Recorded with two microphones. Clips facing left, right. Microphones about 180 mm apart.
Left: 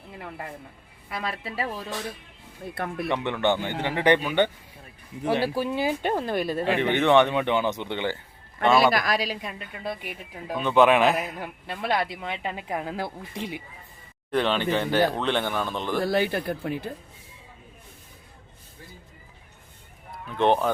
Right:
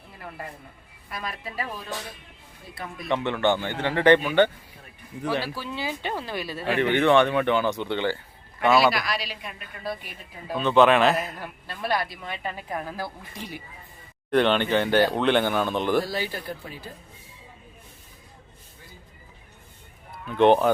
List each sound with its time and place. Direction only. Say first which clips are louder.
1.1 s a man's voice: left 2 dB; 30° left (ahead or behind)
2.7 s speech: left 7 dB; 60° left (ahead or behind)
3.1 s a man's voice: right 2 dB; 15° left (ahead or behind)
5.5 s speech: left 7 dB; 55° left (ahead or behind)
6.7 s a man's voice: right 2 dB; 15° left (ahead or behind)
8.9 s speech: left 3 dB; 45° left (ahead or behind)
10.1 s a man's voice: left 1 dB; 15° left (ahead or behind)
14.3 s speech: right 3 dB; centre (ahead or behind)
16.0 s speech: left 6 dB; 60° left (ahead or behind)
20.3 s speech: right 4 dB; centre (ahead or behind)